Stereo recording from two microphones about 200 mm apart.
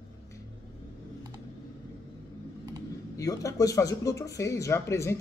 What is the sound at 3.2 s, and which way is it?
Speech, 15° left (ahead or behind).